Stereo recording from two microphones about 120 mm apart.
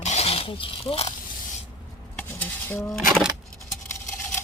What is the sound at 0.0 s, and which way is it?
Roaring cats, 65° left (ahead or behind).